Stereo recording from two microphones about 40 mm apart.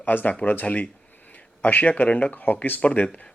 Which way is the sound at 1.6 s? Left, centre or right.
Left.